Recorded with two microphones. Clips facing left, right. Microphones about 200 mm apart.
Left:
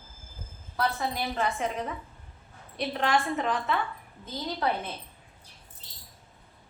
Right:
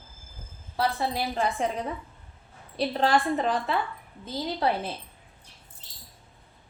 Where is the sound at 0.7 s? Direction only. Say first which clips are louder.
Right 2 dB; 30° right (ahead or behind).